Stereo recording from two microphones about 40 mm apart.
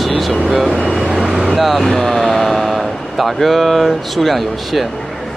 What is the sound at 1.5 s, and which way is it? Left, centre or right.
Speech, centre.